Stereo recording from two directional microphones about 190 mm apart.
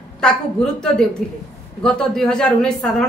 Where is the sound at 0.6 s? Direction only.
5° left (ahead or behind).